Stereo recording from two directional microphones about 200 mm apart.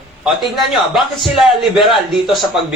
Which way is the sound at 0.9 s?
Centre (ahead or behind).